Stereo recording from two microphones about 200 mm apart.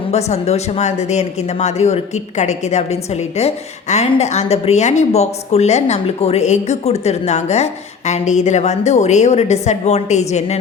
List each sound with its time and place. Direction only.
0.1 s a woman's voice: 35° left (ahead or behind)